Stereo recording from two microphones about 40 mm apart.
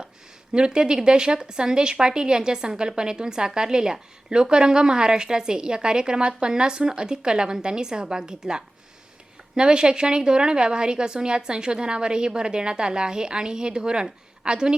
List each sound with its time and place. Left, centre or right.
0.5 s speech: right